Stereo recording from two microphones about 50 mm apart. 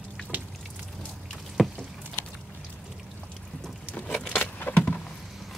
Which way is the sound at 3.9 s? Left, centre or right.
Left.